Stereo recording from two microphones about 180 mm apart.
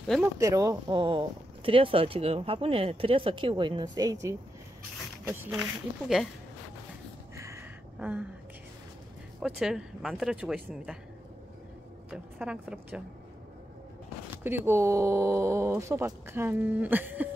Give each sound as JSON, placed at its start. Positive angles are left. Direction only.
{"t": 0.2, "sound": "speech", "side_deg": -20}
{"t": 7.3, "sound": "a sound", "side_deg": -15}
{"t": 9.4, "sound": "speech", "side_deg": -5}
{"t": 12.1, "sound": "speech", "side_deg": -5}
{"t": 14.4, "sound": "speech", "side_deg": -10}